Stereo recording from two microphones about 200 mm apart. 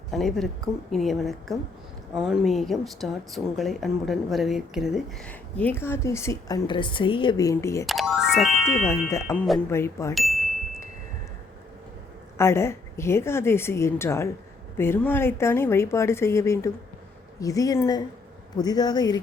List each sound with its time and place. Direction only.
0.1 s speech: centre (ahead or behind)
7.9 s speech: centre (ahead or behind)
8.6 s speech: 15° left (ahead or behind)
10.2 s chime: centre (ahead or behind)
12.4 s speech: 15° left (ahead or behind)